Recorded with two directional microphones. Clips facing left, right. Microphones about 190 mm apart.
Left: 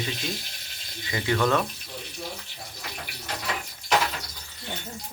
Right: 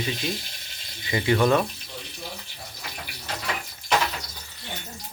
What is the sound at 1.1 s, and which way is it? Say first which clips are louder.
Speech: right 3 dB; 20° right (ahead or behind).